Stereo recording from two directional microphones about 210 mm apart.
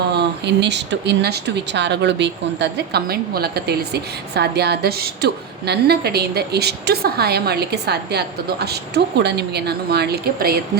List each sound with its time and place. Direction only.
0.1 s speech: 55° right (ahead or behind)